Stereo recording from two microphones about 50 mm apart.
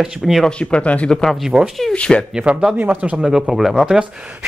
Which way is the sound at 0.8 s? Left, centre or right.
Left.